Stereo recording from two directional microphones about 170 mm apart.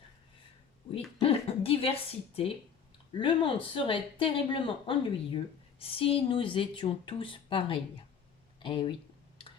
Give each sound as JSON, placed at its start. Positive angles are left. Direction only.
{"t": 1.2, "sound": "speech", "side_deg": 35}